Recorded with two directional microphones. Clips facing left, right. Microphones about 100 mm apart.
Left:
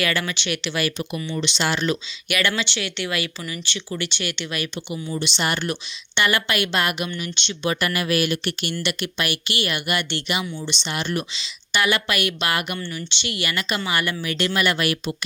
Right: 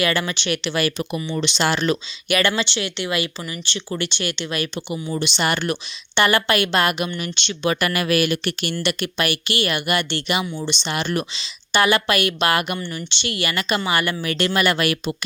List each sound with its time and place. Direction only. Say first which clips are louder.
0.0 s a woman's voice: right 3 dB; 25° right (ahead or behind); by 2.0 s 50° right (ahead or behind)
2.3 s speech: right 3 dB; 35° right (ahead or behind)
5.1 s speech: right 3 dB; 55° right (ahead or behind)
6.1 s speech: right 4 dB; 40° right (ahead or behind); by 8.7 s 60° right (ahead or behind)
8.8 s a woman's voice: right 4 dB; 45° right (ahead or behind)
10.8 s speech: right 2 dB; 50° right (ahead or behind)
11.3 s speech: right 4 dB; 40° right (ahead or behind)